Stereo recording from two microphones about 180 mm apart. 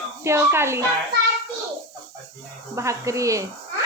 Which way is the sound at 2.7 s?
15° right (ahead or behind).